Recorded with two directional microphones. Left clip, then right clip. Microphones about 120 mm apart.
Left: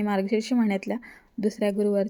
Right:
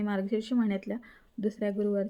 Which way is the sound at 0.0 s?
30° left (ahead or behind).